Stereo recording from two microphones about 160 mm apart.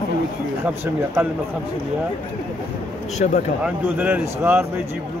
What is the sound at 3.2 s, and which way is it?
Speech, 45° left (ahead or behind).